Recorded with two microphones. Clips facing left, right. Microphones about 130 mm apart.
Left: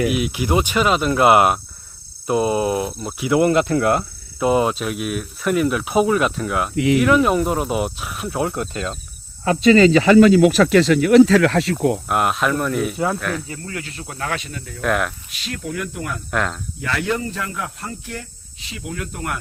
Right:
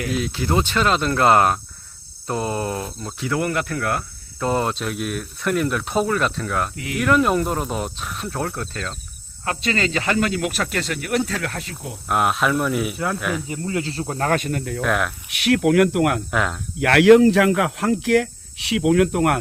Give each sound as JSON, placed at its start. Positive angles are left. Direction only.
{"t": 0.1, "sound": "speech", "side_deg": 10}
{"t": 6.7, "sound": "speech", "side_deg": 90}
{"t": 7.0, "sound": "speech", "side_deg": 5}
{"t": 8.4, "sound": "speech", "side_deg": 15}
{"t": 10.8, "sound": "speech", "side_deg": 90}
{"t": 12.0, "sound": "speech", "side_deg": 0}
{"t": 13.5, "sound": "speech", "side_deg": -20}
{"t": 14.8, "sound": "speech", "side_deg": 0}
{"t": 15.3, "sound": "speech", "side_deg": -70}
{"t": 16.3, "sound": "speech", "side_deg": -5}
{"t": 16.8, "sound": "speech", "side_deg": -75}